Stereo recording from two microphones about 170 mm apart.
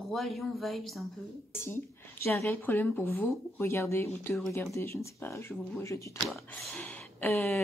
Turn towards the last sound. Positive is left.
turn(degrees=5)  # may be behind; listen again after turning